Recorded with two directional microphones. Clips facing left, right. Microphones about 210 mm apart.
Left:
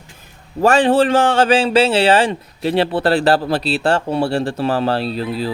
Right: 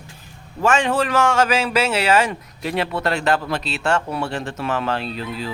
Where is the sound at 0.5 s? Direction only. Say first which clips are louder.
Left 6 dB; 35° left (ahead or behind).